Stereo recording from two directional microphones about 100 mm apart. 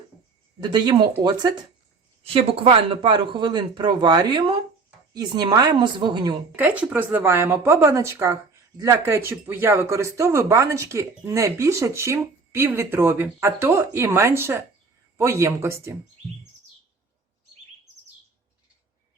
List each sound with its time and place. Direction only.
0.6 s speech: 50° right (ahead or behind)
2.2 s speech: 65° right (ahead or behind); by 6.3 s 50° right (ahead or behind)
6.6 s speech: 15° right (ahead or behind)